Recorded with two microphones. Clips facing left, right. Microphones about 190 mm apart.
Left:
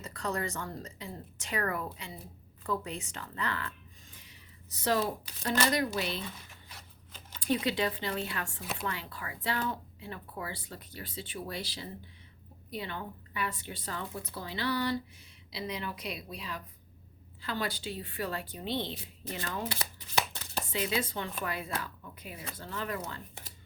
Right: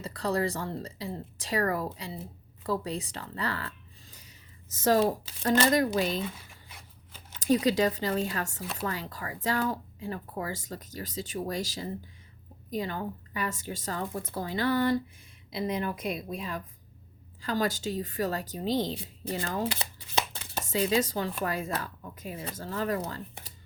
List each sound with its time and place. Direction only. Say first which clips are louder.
0.0 s speech: right 6 dB; 35° right (ahead or behind)
7.4 s a woman's voice: right 6 dB; 40° right (ahead or behind)
20.3 s chopping: right 1 dB; 20° right (ahead or behind)
20.7 s a woman's voice: right 7 dB; 40° right (ahead or behind)